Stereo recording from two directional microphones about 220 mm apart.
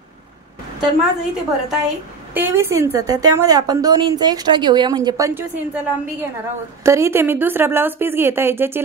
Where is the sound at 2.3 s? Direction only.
10° right (ahead or behind).